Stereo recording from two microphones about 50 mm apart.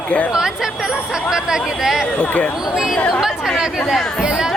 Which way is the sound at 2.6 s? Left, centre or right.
Centre.